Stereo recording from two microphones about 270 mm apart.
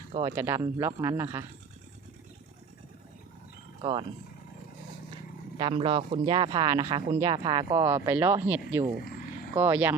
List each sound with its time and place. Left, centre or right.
0.1 s speech: centre
3.8 s speech: centre
5.5 s speech: centre